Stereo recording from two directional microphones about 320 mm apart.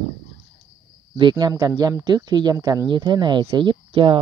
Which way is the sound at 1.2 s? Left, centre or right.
Centre.